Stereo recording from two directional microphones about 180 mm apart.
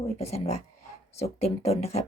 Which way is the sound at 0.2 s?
35° left (ahead or behind).